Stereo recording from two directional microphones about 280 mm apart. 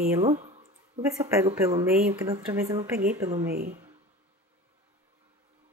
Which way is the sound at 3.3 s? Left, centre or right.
Right.